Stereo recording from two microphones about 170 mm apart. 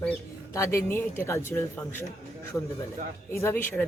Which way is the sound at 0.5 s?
15° left (ahead or behind).